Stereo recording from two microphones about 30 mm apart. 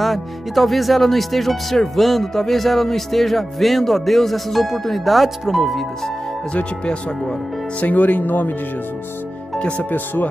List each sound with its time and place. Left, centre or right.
0.0 s speech: centre
6.5 s speech: left
7.8 s speech: left
9.8 s speech: left